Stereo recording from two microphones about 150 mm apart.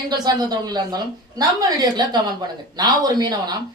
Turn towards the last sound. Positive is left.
turn(degrees=-25)  # may be behind; listen again after turning